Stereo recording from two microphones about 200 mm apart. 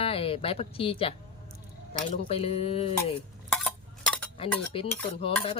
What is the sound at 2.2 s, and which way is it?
Speech, 30° left (ahead or behind).